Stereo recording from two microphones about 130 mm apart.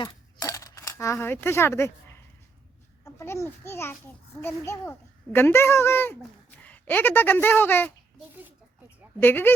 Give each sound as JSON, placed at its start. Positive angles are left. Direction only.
{"t": 0.0, "sound": "coin", "side_deg": 25}
{"t": 3.0, "sound": "a child's voice", "side_deg": 20}
{"t": 9.2, "sound": "speech", "side_deg": 15}